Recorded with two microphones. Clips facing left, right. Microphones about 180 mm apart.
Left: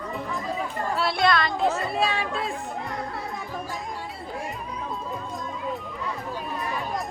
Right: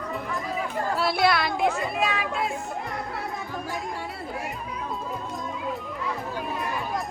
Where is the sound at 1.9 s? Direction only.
30° left (ahead or behind).